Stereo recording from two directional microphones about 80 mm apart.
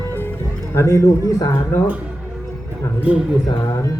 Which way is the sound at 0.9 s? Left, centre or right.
Left.